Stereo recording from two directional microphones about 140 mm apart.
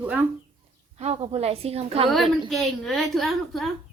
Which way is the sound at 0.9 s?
50° right (ahead or behind).